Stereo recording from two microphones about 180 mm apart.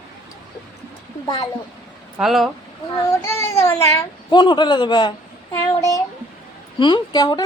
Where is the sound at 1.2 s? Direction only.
20° left (ahead or behind).